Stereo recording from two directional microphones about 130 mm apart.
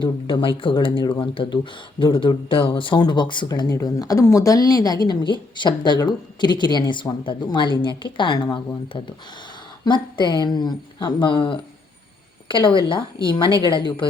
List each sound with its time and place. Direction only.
0.0 s a woman's voice: 40° left (ahead or behind)